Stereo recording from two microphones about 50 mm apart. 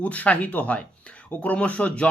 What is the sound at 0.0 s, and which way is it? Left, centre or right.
Speech, left.